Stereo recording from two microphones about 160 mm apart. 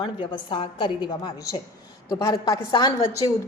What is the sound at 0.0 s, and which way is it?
A woman's voice, 30° left (ahead or behind).